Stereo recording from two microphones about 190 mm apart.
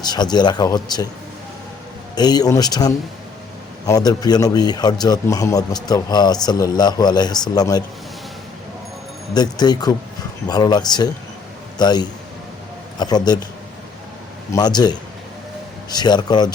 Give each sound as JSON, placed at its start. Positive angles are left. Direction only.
{"t": 0.0, "sound": "a man's voice", "side_deg": 20}
{"t": 2.1, "sound": "a man's voice", "side_deg": 20}
{"t": 9.3, "sound": "a man's voice", "side_deg": 20}
{"t": 14.5, "sound": "a man's voice", "side_deg": 20}